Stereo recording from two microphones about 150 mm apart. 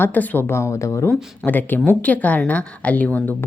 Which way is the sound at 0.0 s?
10° left (ahead or behind).